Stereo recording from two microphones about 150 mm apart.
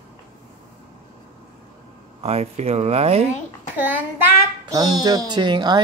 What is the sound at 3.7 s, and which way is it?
Speech, 10° right (ahead or behind).